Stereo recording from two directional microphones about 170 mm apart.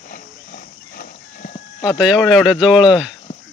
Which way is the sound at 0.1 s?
55° left (ahead or behind).